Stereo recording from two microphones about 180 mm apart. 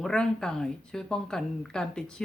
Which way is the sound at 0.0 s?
5° left (ahead or behind).